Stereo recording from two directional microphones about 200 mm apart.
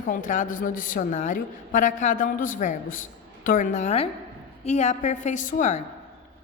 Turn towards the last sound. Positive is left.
turn(degrees=35)  # may be behind; listen again after turning